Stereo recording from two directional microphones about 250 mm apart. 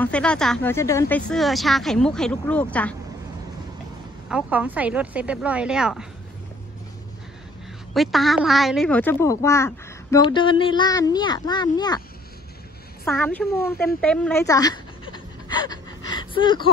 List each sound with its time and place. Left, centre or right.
0.0 s speech: centre
4.3 s speech: centre
7.9 s speech: centre
13.0 s speech: centre
14.0 s a sound: centre